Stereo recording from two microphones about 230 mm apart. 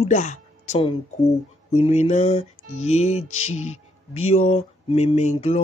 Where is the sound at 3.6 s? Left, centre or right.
Left.